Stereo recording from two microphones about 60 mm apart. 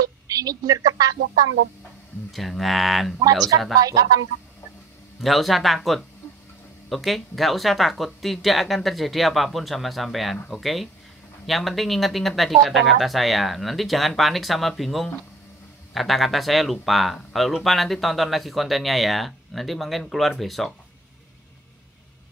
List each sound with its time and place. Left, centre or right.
0.0 s speech: right
2.3 s speech: centre
3.7 s speech: right
5.2 s speech: centre